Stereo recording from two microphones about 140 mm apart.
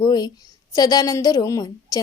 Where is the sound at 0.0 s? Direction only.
30° left (ahead or behind).